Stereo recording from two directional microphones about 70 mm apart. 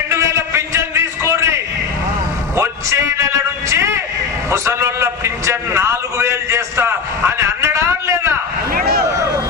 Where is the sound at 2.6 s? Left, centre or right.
Right.